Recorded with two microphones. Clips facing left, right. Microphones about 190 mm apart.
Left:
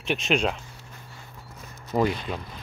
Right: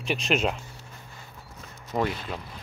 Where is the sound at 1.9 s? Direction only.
Centre (ahead or behind).